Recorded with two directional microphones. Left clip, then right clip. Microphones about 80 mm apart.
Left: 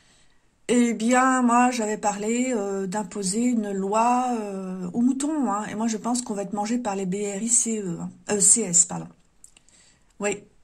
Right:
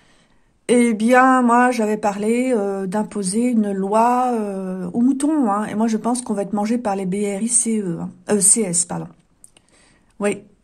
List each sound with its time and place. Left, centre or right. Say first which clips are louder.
0.7 s speech: right 6 dB; right
10.1 s speech: right 5 dB; right